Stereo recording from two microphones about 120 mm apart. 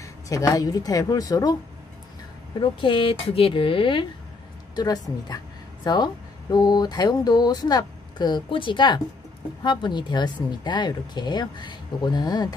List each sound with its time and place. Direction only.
0.0 s speech: 30° left (ahead or behind)
2.6 s speech: 45° left (ahead or behind)
4.7 s speech: 35° left (ahead or behind)